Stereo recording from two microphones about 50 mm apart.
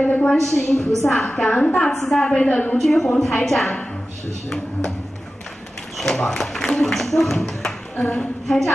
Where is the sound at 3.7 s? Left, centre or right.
Centre.